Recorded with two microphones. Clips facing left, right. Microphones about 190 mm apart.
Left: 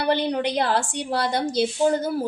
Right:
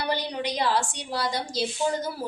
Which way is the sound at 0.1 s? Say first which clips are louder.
Left 9 dB; 60° left (ahead or behind).